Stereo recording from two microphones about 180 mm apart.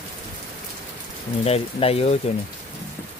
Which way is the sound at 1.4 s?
35° left (ahead or behind).